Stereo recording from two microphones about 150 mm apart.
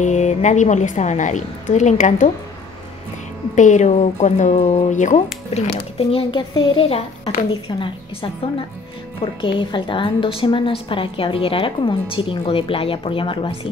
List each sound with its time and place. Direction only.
0.0 s a woman's voice: 50° left (ahead or behind)
3.5 s a woman's voice: 55° left (ahead or behind); by 13.6 s 35° left (ahead or behind)